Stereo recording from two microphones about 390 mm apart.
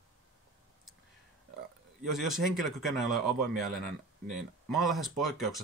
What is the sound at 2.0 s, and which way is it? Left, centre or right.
Speech, centre.